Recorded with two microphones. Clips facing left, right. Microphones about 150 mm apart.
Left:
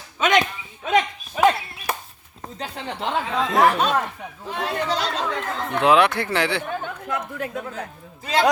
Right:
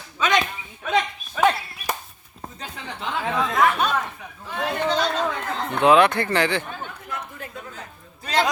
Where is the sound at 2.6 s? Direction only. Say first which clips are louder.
Left 5 dB; 30° left (ahead or behind).